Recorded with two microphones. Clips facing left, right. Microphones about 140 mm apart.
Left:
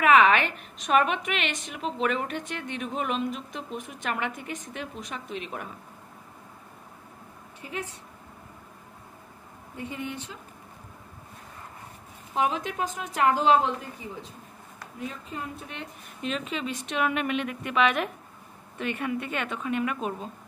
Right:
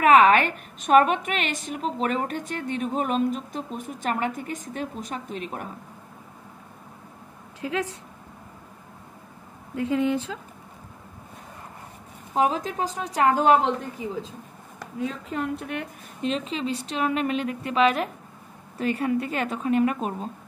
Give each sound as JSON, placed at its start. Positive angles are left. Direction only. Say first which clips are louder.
{"t": 0.0, "sound": "a woman's voice", "louder": "right 3 dB", "side_deg": -45}
{"t": 7.6, "sound": "speech", "louder": "right 8 dB", "side_deg": -90}
{"t": 9.8, "sound": "speech", "louder": "right 11 dB", "side_deg": -90}
{"t": 12.4, "sound": "a woman's voice", "louder": "right 3 dB", "side_deg": -35}
{"t": 13.4, "sound": "a woman's voice", "louder": "right 3 dB", "side_deg": -60}
{"t": 15.0, "sound": "a woman's voice", "louder": "right 7 dB", "side_deg": -90}
{"t": 16.2, "sound": "a woman's voice", "louder": "right 4 dB", "side_deg": -30}